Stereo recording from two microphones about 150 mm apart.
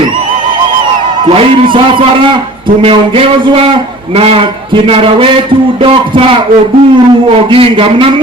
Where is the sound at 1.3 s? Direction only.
35° right (ahead or behind).